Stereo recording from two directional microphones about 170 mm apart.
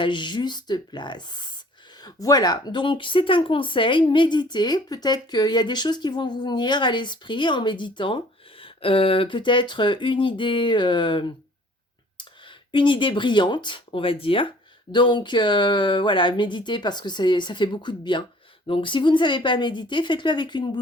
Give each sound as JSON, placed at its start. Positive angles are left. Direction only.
{"t": 0.0, "sound": "speech", "side_deg": 25}